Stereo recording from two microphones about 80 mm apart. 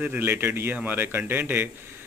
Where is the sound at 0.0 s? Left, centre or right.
Right.